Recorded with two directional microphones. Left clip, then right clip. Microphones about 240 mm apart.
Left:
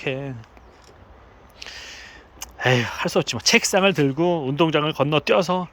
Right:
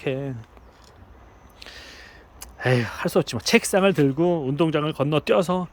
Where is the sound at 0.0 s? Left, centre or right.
Centre.